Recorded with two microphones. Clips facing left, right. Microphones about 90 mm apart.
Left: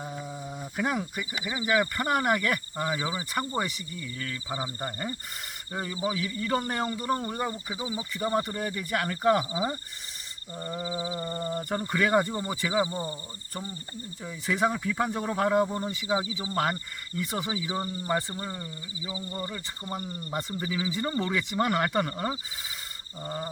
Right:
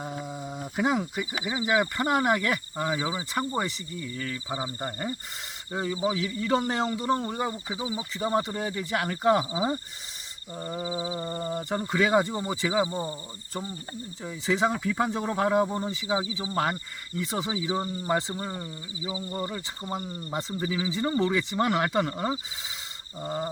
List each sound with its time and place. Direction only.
0.0 s speech: 10° right (ahead or behind)
7.2 s speech: 5° right (ahead or behind)
8.7 s speech: 20° right (ahead or behind)
9.0 s speech: 10° right (ahead or behind)
14.3 s speech: 20° right (ahead or behind)
23.2 s speech: 10° right (ahead or behind)